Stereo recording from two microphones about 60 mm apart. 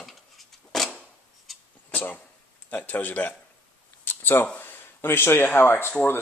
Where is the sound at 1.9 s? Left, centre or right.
Left.